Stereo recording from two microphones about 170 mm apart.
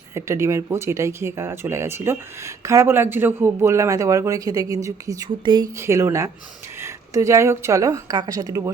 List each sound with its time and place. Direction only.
0.1 s speech: 15° right (ahead or behind)